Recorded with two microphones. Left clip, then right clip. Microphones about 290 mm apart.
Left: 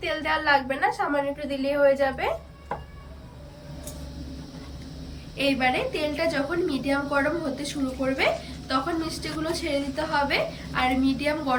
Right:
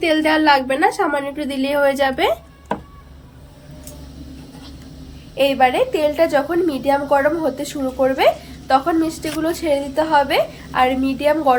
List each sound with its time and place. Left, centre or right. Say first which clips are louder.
0.0 s a woman's voice: right 10 dB; right
5.4 s a woman's voice: right 9 dB; centre